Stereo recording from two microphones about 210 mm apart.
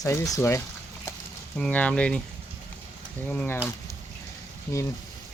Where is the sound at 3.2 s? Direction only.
10° left (ahead or behind).